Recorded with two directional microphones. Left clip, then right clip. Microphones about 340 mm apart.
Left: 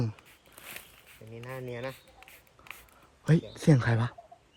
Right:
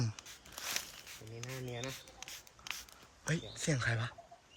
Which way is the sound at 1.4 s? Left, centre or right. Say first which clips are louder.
Left 6 dB; centre.